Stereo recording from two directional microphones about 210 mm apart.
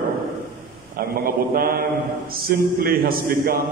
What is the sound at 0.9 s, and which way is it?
A man's voice, 45° right (ahead or behind).